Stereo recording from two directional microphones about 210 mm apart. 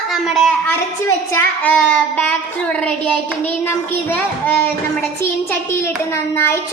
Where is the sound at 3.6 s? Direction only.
10° left (ahead or behind).